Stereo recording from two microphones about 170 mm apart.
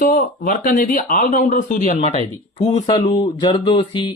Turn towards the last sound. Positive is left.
turn(degrees=30)  # may be behind; listen again after turning